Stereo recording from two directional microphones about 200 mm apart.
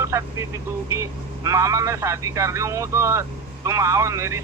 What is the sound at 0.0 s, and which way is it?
Speech, 15° right (ahead or behind).